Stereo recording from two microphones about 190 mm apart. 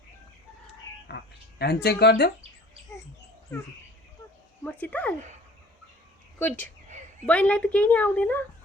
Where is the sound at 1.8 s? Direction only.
60° left (ahead or behind).